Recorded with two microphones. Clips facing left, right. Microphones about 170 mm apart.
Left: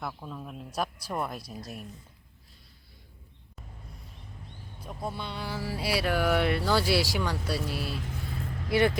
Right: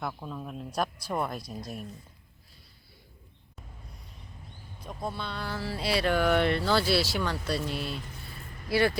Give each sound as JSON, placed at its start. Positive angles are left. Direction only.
{"t": 0.0, "sound": "speech", "side_deg": 0}
{"t": 4.8, "sound": "speech", "side_deg": 10}
{"t": 7.9, "sound": "vehicle", "side_deg": 85}